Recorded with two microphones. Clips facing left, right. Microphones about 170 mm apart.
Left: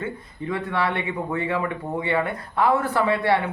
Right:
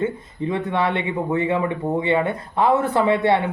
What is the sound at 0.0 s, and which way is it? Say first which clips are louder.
Speech: right 7 dB; 20° right (ahead or behind).